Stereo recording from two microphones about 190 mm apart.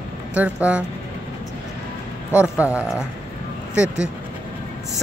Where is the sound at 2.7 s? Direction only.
5° right (ahead or behind).